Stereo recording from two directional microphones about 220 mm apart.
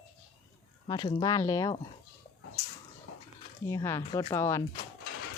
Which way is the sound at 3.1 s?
65° left (ahead or behind).